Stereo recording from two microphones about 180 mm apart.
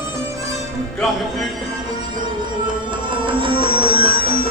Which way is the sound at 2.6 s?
30° right (ahead or behind).